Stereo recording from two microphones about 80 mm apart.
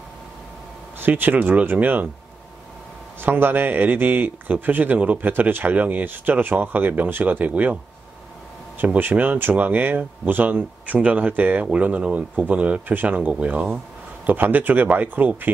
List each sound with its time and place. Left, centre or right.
0.9 s a man's voice: right
3.2 s a man's voice: right